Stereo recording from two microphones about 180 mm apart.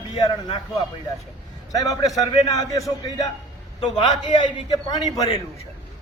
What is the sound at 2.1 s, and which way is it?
Speech, 20° left (ahead or behind).